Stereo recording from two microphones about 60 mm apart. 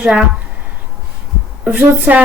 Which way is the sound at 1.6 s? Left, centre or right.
Right.